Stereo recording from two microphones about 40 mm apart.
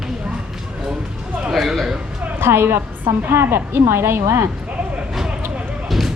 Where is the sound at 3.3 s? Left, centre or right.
Right.